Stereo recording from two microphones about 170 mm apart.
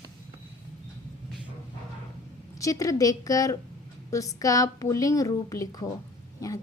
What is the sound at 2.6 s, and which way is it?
A woman's voice, 20° left (ahead or behind).